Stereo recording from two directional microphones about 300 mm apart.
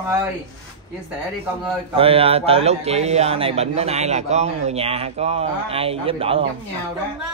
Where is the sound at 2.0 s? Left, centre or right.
Centre.